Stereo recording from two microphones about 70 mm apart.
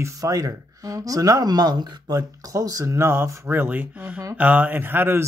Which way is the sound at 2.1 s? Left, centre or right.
Right.